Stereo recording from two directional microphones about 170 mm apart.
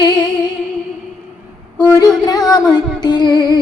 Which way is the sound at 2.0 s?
20° left (ahead or behind).